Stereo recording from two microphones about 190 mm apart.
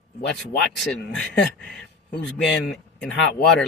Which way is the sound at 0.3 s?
5° left (ahead or behind).